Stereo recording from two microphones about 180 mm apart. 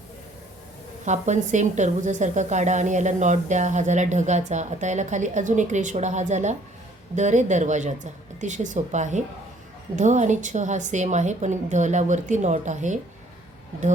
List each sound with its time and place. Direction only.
1.0 s a woman's voice: 40° right (ahead or behind)